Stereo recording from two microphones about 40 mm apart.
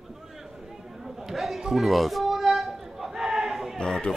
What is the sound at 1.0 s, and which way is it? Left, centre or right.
Chatter, centre.